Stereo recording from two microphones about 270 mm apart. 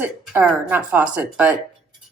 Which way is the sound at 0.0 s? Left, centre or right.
Centre.